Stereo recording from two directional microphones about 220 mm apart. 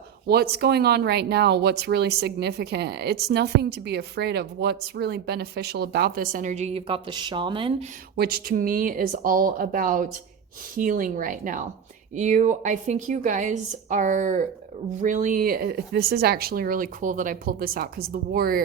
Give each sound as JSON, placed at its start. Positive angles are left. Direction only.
{"t": 0.3, "sound": "speech", "side_deg": -45}
{"t": 8.1, "sound": "speech", "side_deg": -45}